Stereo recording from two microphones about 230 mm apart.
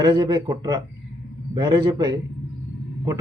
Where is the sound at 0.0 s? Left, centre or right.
Centre.